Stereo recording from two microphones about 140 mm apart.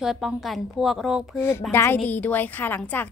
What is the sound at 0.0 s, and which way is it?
A woman's voice, centre (ahead or behind).